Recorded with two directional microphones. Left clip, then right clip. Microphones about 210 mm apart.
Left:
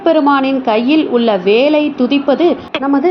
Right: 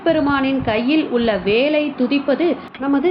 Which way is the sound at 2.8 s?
10° left (ahead or behind).